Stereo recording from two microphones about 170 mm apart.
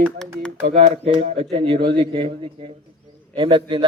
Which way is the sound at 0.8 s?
45° right (ahead or behind).